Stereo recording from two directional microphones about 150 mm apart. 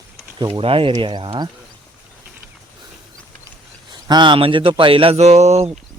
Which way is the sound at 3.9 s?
30° right (ahead or behind).